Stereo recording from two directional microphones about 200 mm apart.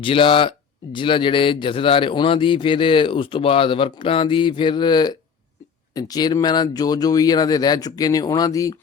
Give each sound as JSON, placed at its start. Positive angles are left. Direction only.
{"t": 0.0, "sound": "a man's voice", "side_deg": 25}